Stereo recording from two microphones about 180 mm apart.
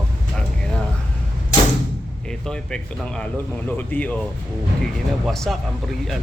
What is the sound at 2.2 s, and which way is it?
Speech, 5° left (ahead or behind).